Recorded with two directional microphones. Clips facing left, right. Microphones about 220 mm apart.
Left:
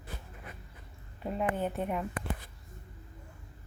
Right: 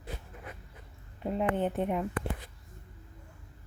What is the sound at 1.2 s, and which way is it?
Speech, 20° right (ahead or behind).